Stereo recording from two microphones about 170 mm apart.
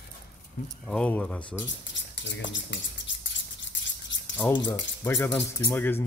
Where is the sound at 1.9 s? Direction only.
90° left.